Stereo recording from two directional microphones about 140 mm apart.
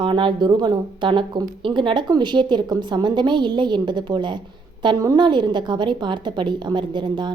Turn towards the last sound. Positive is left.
turn(degrees=-35)  # may be behind; listen again after turning